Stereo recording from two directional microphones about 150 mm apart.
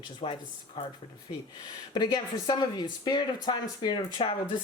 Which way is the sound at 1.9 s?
30° left (ahead or behind).